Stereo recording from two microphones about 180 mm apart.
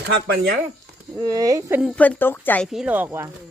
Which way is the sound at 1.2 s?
20° right (ahead or behind).